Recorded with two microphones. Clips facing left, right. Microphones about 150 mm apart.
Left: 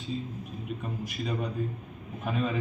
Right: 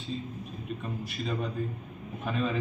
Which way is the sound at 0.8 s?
10° left (ahead or behind).